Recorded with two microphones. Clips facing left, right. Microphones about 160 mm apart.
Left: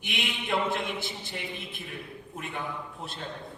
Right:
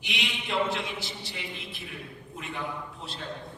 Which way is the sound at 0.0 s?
50° left (ahead or behind).